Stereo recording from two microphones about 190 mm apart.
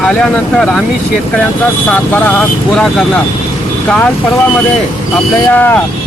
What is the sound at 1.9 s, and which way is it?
Speech, 10° left (ahead or behind).